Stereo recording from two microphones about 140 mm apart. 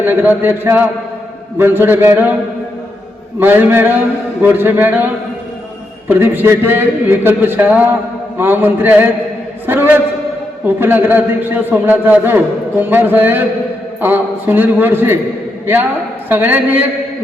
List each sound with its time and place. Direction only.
0.0 s a man's voice: 15° right (ahead or behind)
3.4 s a man's voice: 15° right (ahead or behind)